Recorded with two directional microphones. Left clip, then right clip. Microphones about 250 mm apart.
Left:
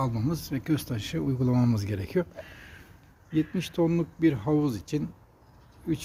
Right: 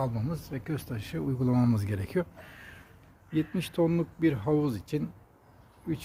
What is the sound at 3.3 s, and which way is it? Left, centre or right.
Speech, centre.